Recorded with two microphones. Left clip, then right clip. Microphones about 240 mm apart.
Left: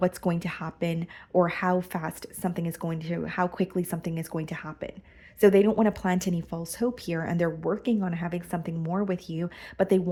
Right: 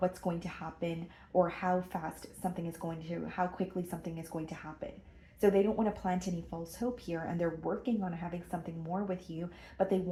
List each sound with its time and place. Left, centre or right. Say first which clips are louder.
0.0 s speech: left 7 dB; left